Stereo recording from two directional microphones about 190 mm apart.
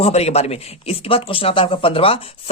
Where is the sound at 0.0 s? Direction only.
35° left (ahead or behind).